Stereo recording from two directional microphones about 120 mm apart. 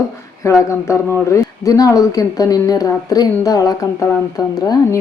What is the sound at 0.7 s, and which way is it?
Speech, 25° left (ahead or behind).